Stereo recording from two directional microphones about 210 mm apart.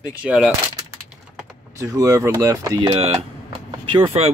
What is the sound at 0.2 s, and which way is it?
Speech, 5° right (ahead or behind).